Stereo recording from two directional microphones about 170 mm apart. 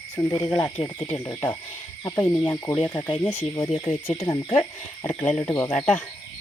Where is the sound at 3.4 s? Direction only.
25° left (ahead or behind).